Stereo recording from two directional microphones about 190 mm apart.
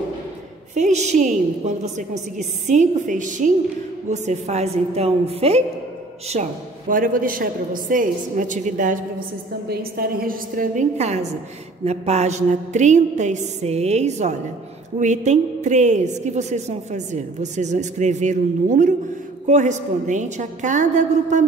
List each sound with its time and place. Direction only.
0.7 s a woman's voice: 40° right (ahead or behind)
9.7 s a woman's voice: 50° right (ahead or behind)